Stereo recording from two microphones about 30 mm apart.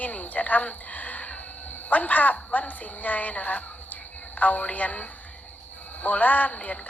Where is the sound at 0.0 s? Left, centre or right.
Left.